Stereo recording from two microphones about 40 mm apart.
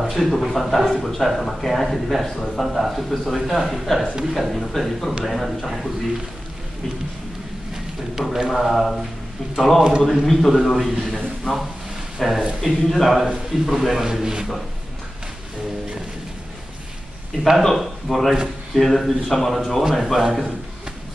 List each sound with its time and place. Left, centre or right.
0.0 s a man's voice: centre
7.7 s a sound: centre
8.5 s a man's voice: centre
11.1 s a man's voice: centre
12.2 s a man's voice: centre
17.4 s a man's voice: centre